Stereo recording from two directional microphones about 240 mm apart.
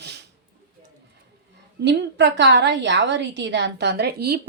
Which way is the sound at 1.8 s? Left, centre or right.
Right.